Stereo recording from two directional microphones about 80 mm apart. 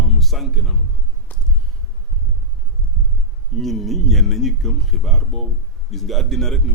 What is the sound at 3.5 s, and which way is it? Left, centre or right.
A man's voice, centre.